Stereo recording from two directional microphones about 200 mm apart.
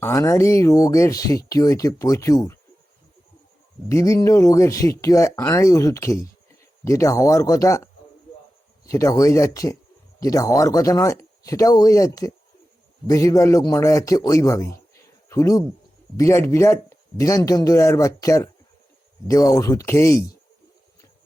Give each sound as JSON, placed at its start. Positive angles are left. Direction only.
{"t": 0.0, "sound": "speech", "side_deg": 15}
{"t": 3.8, "sound": "speech", "side_deg": 15}
{"t": 8.8, "sound": "speech", "side_deg": 15}